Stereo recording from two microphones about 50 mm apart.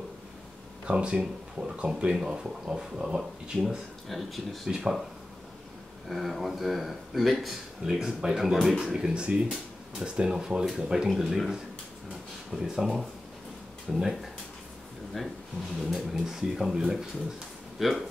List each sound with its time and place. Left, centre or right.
0.8 s speech: centre
2.0 s speech: centre
3.5 s speech: centre
4.6 s speech: centre
6.0 s speech: centre
7.8 s speech: centre
12.5 s speech: centre
15.2 s speech: centre
16.1 s speech: centre